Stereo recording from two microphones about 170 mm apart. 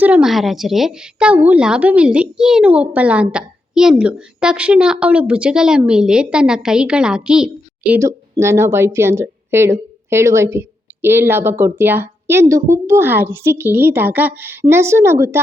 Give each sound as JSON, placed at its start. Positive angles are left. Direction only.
{"t": 0.0, "sound": "a woman's voice", "side_deg": -5}
{"t": 7.9, "sound": "a woman's voice", "side_deg": -15}